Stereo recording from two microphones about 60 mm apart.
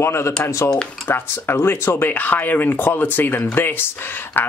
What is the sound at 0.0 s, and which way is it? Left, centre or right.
Speech, left.